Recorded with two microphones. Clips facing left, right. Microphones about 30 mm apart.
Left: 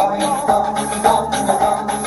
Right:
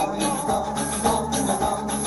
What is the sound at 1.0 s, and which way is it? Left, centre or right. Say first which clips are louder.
Music: left 8 dB; left.